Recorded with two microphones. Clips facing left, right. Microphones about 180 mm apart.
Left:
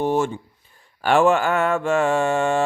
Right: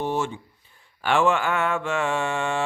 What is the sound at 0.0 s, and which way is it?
Speech, 45° left (ahead or behind).